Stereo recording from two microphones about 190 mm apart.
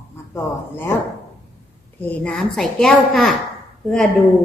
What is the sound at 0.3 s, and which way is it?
Speech, 10° left (ahead or behind).